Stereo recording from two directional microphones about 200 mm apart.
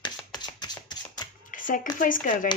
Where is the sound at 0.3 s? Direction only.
20° left (ahead or behind).